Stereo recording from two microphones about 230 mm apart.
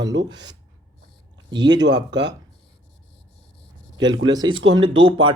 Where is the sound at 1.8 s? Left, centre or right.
Right.